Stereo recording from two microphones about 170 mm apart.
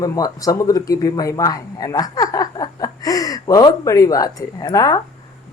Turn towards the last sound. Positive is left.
turn(degrees=20)  # may be behind; listen again after turning